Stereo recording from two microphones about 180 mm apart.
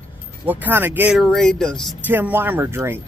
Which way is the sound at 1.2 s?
5° left (ahead or behind).